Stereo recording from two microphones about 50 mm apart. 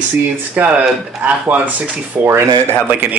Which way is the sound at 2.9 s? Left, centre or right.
Right.